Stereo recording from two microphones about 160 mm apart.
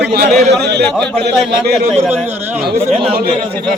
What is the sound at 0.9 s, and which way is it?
Speech, 5° left (ahead or behind).